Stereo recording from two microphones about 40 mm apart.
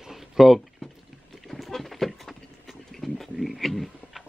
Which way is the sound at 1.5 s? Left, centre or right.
Centre.